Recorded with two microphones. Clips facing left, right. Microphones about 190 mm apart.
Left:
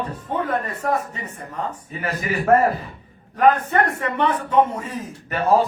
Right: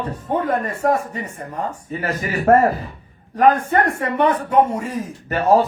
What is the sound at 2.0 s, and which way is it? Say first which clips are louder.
Speech: right 3 dB; 35° right (ahead or behind).